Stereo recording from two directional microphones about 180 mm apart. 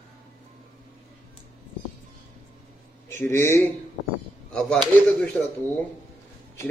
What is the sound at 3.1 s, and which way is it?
A man's voice, 15° left (ahead or behind).